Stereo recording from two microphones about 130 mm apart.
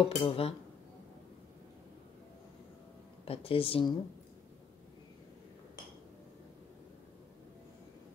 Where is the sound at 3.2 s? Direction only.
45° left (ahead or behind).